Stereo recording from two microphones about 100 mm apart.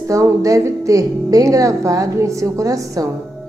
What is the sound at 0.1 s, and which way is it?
A woman's voice, 35° right (ahead or behind).